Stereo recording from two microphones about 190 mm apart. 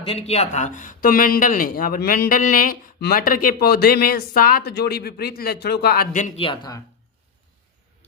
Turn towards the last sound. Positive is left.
turn(degrees=25)  # may be behind; listen again after turning